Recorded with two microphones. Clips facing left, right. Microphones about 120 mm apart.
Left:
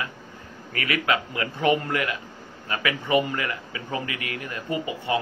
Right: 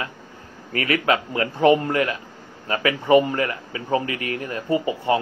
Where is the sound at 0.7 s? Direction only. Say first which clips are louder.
Right 4 dB; 35° right (ahead or behind).